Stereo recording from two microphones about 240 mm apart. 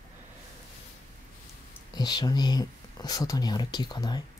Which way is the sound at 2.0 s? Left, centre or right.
Centre.